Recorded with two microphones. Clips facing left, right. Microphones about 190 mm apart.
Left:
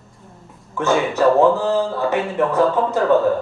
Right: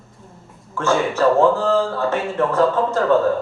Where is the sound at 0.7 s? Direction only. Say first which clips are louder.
Left 1 dB; 15° left (ahead or behind).